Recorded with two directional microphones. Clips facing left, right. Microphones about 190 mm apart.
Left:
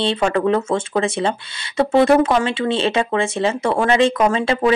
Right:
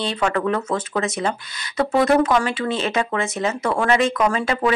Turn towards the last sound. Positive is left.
turn(degrees=25)  # may be behind; listen again after turning